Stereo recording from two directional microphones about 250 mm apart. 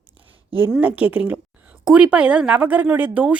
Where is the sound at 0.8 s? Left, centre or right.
Centre.